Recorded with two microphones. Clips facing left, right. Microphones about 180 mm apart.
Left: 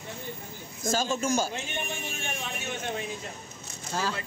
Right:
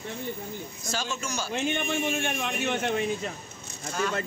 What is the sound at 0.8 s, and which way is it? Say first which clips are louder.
Speech: left 7 dB; 50° left (ahead or behind).